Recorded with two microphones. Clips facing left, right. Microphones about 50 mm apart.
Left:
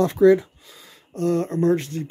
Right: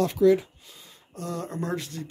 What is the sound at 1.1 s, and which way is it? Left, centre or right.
Speech, left.